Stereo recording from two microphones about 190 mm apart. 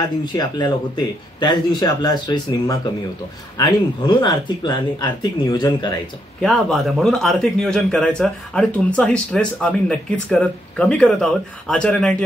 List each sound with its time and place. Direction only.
0.2 s speech: 20° left (ahead or behind)
6.4 s speech: centre (ahead or behind)